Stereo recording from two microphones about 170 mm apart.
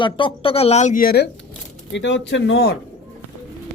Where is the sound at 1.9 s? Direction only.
90° left.